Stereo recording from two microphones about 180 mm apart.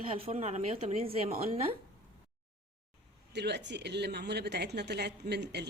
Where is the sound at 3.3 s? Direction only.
70° right (ahead or behind).